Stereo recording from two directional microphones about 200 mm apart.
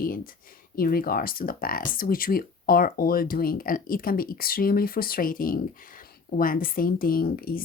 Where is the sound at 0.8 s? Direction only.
45° left (ahead or behind).